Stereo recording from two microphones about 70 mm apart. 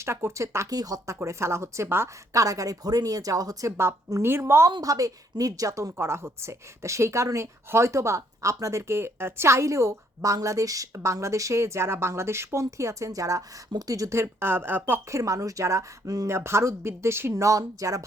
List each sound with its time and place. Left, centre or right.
0.0 s speech: right
0.7 s a woman's voice: right
2.3 s speech: right
4.2 s speech: right
4.7 s a woman's voice: right
15.1 s a woman's voice: right
16.3 s speech: right
17.3 s speech: right